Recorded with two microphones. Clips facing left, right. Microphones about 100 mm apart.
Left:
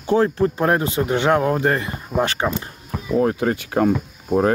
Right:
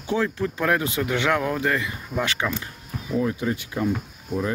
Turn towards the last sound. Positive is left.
turn(degrees=55)  # may be behind; listen again after turning